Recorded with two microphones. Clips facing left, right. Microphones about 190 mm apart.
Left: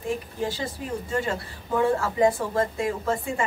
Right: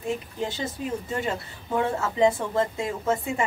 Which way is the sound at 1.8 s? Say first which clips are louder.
Left 1 dB; 20° right (ahead or behind).